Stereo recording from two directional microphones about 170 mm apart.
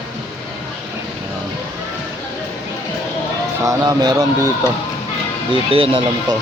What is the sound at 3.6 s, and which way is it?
Speech, 25° right (ahead or behind).